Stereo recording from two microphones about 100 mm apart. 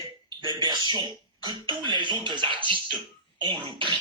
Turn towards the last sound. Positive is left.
turn(degrees=-55)  # may be behind; listen again after turning